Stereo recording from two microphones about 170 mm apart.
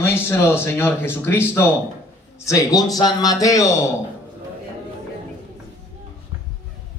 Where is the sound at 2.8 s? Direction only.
20° left (ahead or behind).